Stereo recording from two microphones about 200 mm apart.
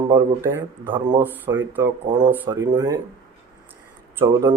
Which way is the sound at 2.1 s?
20° right (ahead or behind).